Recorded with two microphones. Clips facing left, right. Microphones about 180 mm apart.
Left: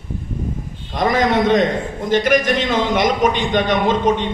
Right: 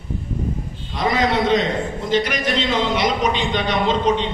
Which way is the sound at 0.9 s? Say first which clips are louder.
Left 3 dB; 50° left (ahead or behind).